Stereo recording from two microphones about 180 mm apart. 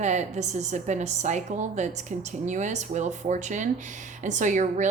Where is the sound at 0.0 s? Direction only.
40° right (ahead or behind).